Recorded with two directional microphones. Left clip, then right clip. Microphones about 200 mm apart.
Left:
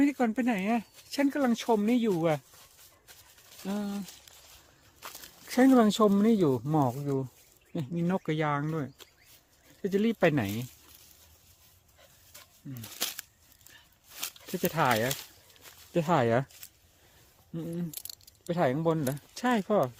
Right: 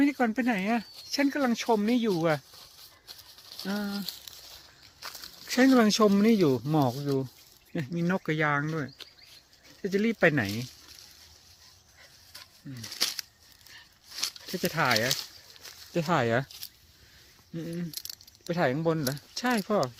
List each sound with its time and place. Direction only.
0.0 s speech: 10° left (ahead or behind)
3.6 s speech: centre (ahead or behind)
5.5 s speech: 10° left (ahead or behind)
9.8 s speech: 20° left (ahead or behind)
12.3 s a sound: 55° left (ahead or behind)
14.6 s speech: 25° left (ahead or behind)
17.5 s speech: 15° left (ahead or behind)